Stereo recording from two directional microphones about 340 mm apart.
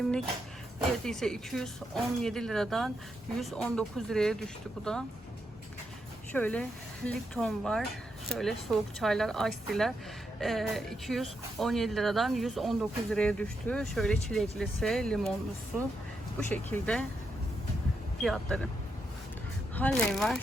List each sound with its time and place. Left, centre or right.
1.0 s speech: centre
6.3 s speech: centre
18.2 s speech: centre
19.7 s speech: centre